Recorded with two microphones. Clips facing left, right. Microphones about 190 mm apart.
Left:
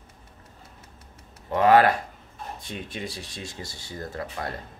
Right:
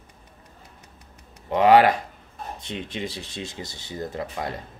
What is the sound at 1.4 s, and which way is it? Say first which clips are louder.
Speech: right 2 dB; 15° right (ahead or behind).